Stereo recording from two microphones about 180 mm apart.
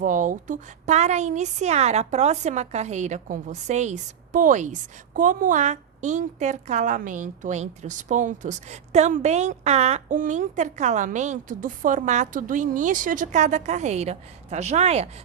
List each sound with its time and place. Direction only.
0.0 s a woman's voice: 45° right (ahead or behind)